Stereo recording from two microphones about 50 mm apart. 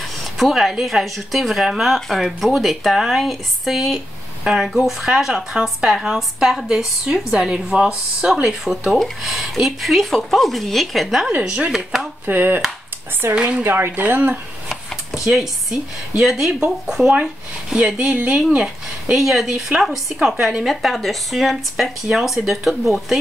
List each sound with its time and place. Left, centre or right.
0.4 s speech: centre
8.5 s speech: centre
11.7 s speech: centre
12.3 s speech: right
13.3 s speech: right
13.6 s speech: right
15.2 s speech: centre; by 18.2 s right
18.2 s speech: right
19.1 s speech: centre
20.2 s speech: centre
20.8 s speech: centre